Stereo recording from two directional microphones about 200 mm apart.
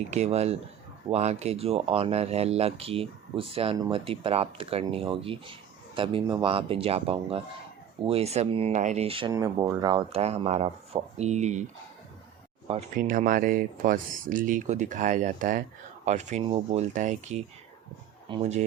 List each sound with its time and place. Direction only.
0.1 s speech: 35° right (ahead or behind)
9.3 s speech: 15° right (ahead or behind); by 11.7 s 35° right (ahead or behind)
13.0 s speech: 40° right (ahead or behind)
18.3 s speech: 25° right (ahead or behind)